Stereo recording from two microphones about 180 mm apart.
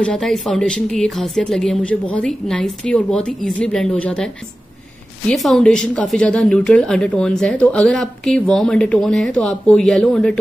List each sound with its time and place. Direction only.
0.0 s a woman's voice: 5° left (ahead or behind)
5.3 s a woman's voice: 5° left (ahead or behind)